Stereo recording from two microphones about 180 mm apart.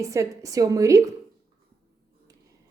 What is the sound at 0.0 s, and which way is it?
Speech, 15° right (ahead or behind).